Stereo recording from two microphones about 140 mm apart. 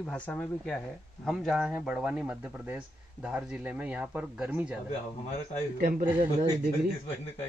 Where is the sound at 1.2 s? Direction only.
5° right (ahead or behind).